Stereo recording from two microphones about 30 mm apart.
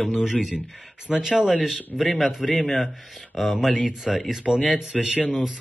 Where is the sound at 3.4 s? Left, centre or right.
Centre.